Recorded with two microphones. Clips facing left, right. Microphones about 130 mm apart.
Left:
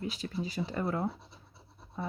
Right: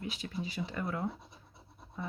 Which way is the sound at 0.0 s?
35° left (ahead or behind).